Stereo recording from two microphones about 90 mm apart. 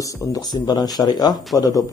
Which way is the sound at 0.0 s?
45° left (ahead or behind).